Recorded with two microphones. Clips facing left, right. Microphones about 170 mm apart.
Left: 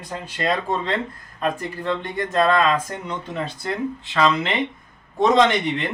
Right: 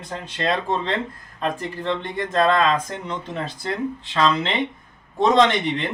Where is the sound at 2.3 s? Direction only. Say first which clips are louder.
Even; 5° left (ahead or behind).